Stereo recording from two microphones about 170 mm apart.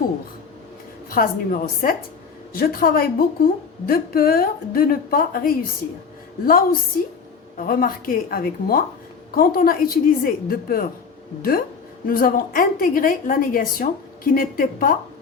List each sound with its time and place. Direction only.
1.1 s a woman's voice: 55° left (ahead or behind)
12.0 s a woman's voice: 55° left (ahead or behind)